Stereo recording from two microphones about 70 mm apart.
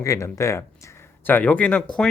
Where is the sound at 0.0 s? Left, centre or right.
Left.